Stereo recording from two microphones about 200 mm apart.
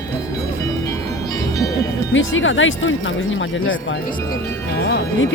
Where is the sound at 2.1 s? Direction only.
70° left (ahead or behind).